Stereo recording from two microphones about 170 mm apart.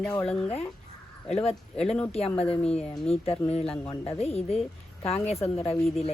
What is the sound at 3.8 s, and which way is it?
Speech, 10° left (ahead or behind).